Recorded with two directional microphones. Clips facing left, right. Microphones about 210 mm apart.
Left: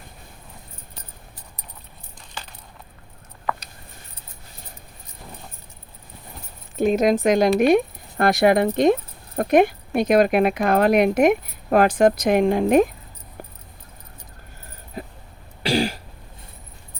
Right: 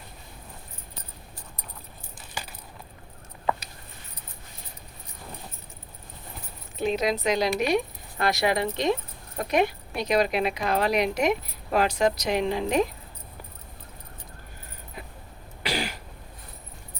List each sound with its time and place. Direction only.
6.7 s speech: 50° left (ahead or behind)
15.0 s a sound: 40° left (ahead or behind)
15.6 s throat clearing: 30° left (ahead or behind)